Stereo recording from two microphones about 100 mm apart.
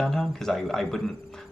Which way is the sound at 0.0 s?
Centre (ahead or behind).